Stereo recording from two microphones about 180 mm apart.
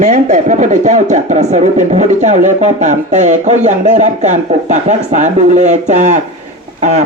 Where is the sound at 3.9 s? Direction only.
40° right (ahead or behind).